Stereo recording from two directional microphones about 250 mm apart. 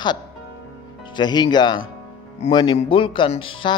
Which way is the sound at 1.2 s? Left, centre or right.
Centre.